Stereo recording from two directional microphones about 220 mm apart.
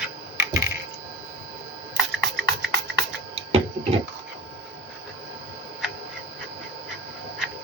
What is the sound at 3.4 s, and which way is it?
Tick-tock, 25° right (ahead or behind).